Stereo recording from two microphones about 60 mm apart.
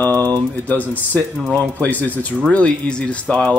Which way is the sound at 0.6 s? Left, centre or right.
Left.